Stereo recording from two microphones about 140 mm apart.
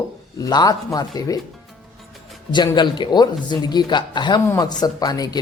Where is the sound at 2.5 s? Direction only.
30° left (ahead or behind).